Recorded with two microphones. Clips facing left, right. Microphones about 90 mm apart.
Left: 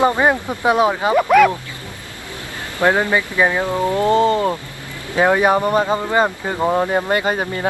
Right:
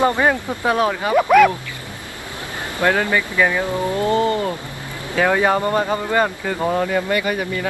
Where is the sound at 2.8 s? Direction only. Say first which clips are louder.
Left 2 dB; 20° left (ahead or behind).